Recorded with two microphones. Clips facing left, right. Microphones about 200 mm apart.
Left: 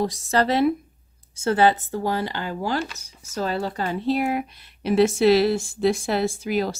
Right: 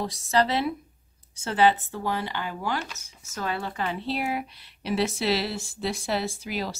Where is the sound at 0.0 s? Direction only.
45° left (ahead or behind).